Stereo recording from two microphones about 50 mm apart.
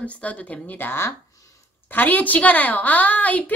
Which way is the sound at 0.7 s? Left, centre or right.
Left.